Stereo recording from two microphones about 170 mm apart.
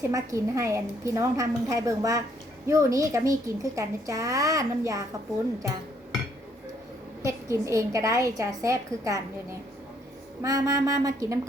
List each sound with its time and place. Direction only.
0.1 s speech: 20° right (ahead or behind)
7.3 s a woman's voice: 20° right (ahead or behind)